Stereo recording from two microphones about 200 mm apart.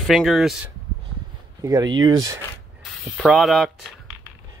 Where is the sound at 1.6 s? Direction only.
15° right (ahead or behind).